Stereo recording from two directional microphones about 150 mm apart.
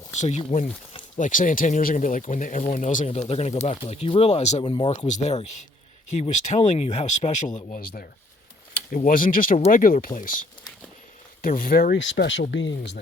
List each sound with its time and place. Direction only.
0.2 s speech: 50° left (ahead or behind)
3.1 s speech: 45° left (ahead or behind); by 8.0 s 65° left (ahead or behind)
9.0 s speech: 65° left (ahead or behind)
11.4 s speech: 70° left (ahead or behind); by 12.3 s 85° left